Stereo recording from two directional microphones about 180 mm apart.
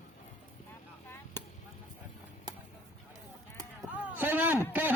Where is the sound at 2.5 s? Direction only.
25° right (ahead or behind).